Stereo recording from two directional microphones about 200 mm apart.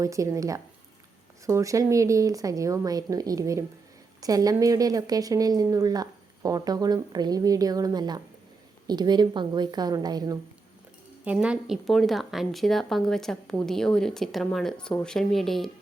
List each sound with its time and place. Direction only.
0.0 s a woman's voice: 15° right (ahead or behind)
11.3 s speech: 5° right (ahead or behind)